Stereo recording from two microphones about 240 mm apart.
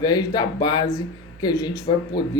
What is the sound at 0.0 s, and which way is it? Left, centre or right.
Speech, centre.